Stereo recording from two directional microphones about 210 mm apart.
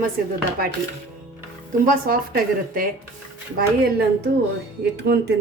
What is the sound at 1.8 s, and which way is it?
A woman's voice, 45° right (ahead or behind).